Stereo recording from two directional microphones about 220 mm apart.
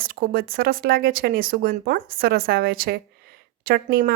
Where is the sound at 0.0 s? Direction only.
40° right (ahead or behind).